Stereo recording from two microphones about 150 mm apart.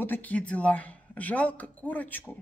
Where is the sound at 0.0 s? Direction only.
10° left (ahead or behind).